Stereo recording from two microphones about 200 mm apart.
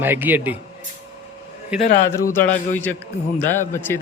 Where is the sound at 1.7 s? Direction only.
5° right (ahead or behind).